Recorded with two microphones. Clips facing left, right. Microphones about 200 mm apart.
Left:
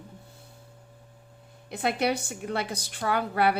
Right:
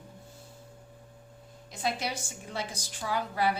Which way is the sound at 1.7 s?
60° left (ahead or behind).